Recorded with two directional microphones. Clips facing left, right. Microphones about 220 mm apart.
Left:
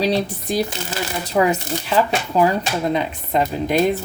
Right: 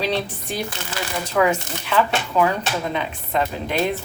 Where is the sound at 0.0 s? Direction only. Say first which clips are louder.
Left 4 dB; 40° left (ahead or behind).